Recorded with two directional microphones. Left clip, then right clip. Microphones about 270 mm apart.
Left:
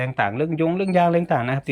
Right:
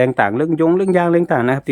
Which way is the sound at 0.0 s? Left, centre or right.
Right.